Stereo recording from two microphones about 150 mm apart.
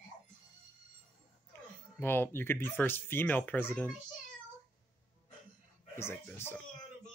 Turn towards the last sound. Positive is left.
turn(degrees=15)  # may be behind; listen again after turning